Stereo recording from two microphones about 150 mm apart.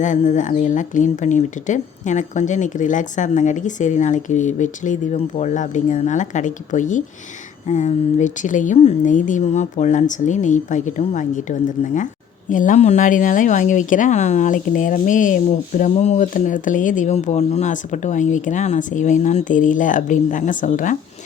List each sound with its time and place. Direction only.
0.0 s a woman's voice: 55° left (ahead or behind)